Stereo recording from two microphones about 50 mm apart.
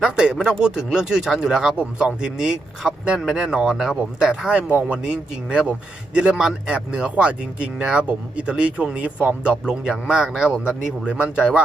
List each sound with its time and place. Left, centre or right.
0.0 s speech: centre
4.7 s speech: right